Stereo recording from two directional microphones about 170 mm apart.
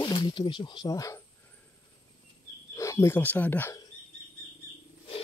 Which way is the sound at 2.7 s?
15° left (ahead or behind).